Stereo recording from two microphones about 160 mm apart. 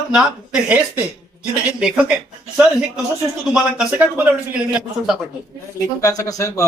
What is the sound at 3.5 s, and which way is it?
Speech, 5° right (ahead or behind).